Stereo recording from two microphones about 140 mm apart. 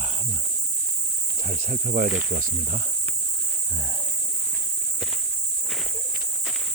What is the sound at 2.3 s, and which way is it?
Speech, 85° right.